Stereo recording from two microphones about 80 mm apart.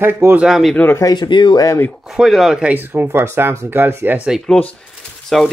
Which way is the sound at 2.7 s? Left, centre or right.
Right.